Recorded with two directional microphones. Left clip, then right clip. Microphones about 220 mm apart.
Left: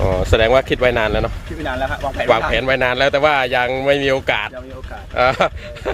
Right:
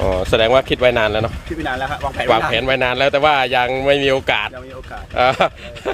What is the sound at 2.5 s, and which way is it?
Speech, 5° right (ahead or behind).